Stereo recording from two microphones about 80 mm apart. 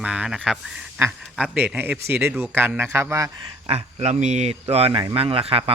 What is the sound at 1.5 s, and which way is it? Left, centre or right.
A man's voice, right.